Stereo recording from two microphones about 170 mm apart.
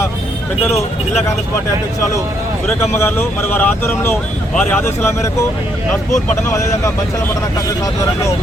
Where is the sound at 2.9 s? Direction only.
15° left (ahead or behind).